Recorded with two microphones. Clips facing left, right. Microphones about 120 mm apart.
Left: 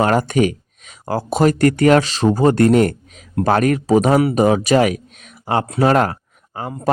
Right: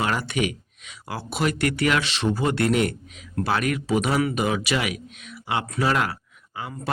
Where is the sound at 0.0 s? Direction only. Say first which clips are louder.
Left 9 dB; 45° left (ahead or behind).